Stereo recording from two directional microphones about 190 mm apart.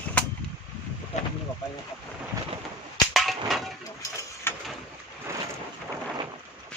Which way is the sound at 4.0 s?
15° left (ahead or behind).